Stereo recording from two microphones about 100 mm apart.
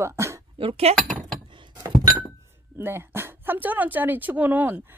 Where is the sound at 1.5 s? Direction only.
50° right (ahead or behind).